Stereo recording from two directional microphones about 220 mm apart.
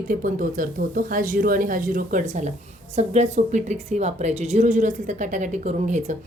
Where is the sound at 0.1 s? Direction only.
35° right (ahead or behind).